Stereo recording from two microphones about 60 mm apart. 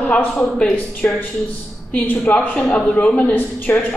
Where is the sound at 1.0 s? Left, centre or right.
Left.